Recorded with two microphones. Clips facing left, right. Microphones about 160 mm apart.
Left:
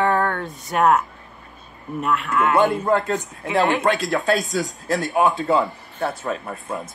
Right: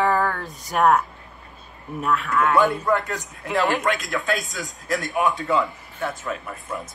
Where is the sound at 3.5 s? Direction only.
Centre (ahead or behind).